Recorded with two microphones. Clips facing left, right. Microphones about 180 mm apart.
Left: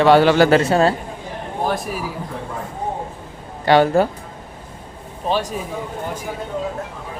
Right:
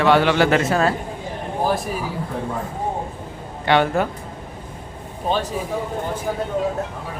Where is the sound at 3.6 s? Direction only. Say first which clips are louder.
Left 4 dB; 35° left (ahead or behind).